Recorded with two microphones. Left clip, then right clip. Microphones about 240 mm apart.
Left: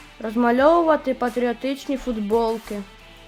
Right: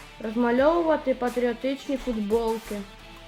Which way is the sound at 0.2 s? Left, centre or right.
Left.